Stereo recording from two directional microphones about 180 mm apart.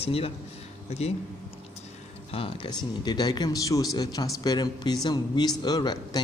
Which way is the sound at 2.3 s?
30° left (ahead or behind).